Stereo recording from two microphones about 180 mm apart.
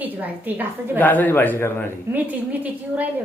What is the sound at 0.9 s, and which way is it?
Speech, 10° left (ahead or behind).